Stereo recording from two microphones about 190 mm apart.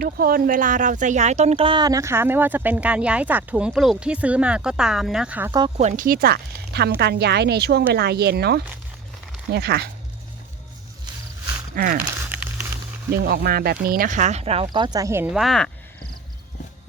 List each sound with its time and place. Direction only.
0.0 s speech: 50° right (ahead or behind); by 5.5 s 5° right (ahead or behind)
5.5 s speech: 20° right (ahead or behind)
5.7 s speech: 40° right (ahead or behind); by 9.8 s 60° right (ahead or behind)
11.7 s speech: 50° right (ahead or behind)
12.3 s a sound: 10° right (ahead or behind)
13.2 s speech: 55° right (ahead or behind); by 15.7 s centre (ahead or behind)